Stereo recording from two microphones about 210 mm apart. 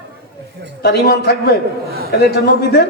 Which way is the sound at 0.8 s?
50° left (ahead or behind).